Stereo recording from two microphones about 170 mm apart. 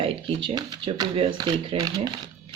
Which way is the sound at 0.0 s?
30° right (ahead or behind).